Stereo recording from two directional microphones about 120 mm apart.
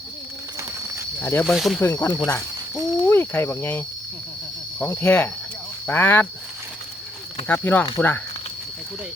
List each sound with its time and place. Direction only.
1.2 s speech: 15° left (ahead or behind)
1.5 s speech: centre (ahead or behind)
1.9 s speech: 15° left (ahead or behind)
7.4 s speech: 15° left (ahead or behind)